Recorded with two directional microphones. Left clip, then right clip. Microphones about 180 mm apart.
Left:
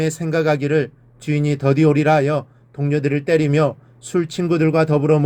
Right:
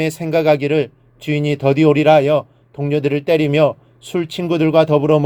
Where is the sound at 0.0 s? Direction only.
30° right (ahead or behind).